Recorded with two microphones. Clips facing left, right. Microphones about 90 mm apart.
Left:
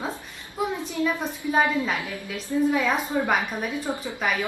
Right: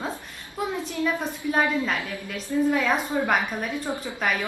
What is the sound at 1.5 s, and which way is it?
A woman's voice, 5° left (ahead or behind).